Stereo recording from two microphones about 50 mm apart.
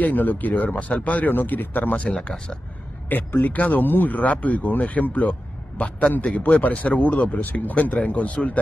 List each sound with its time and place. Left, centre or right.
0.0 s speech: left
2.0 s speech: left
3.1 s speech: left